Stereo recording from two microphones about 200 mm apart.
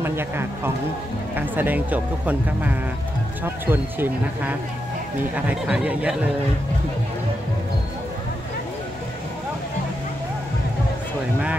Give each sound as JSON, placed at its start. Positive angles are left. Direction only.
{"t": 0.0, "sound": "speech", "side_deg": -10}